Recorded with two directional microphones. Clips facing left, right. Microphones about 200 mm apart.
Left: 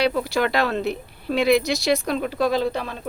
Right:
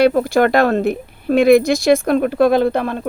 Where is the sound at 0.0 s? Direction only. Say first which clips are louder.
Right 8 dB; 50° right (ahead or behind).